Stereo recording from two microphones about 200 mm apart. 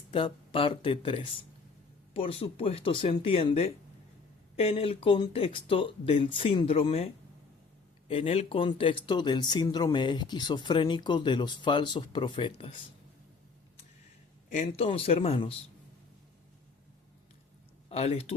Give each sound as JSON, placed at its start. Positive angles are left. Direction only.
{"t": 0.1, "sound": "speech", "side_deg": 25}
{"t": 14.5, "sound": "speech", "side_deg": 35}
{"t": 17.8, "sound": "speech", "side_deg": 30}